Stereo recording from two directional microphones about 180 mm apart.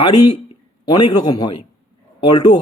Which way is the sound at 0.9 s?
20° left (ahead or behind).